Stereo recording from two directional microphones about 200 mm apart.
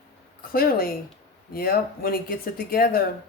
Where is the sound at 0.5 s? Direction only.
50° left (ahead or behind).